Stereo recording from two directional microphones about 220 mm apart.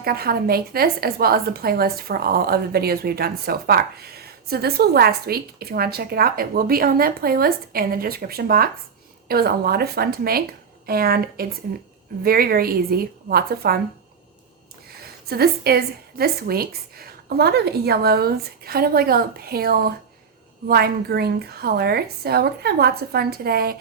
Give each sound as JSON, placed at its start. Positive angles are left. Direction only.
{"t": 0.0, "sound": "a woman's voice", "side_deg": -45}
{"t": 15.0, "sound": "a woman's voice", "side_deg": -45}